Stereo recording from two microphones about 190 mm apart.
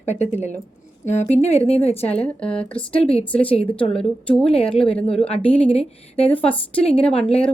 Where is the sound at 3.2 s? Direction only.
30° left (ahead or behind).